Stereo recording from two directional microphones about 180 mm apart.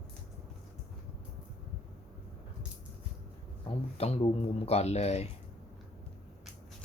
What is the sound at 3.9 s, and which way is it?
Speech, 35° left (ahead or behind).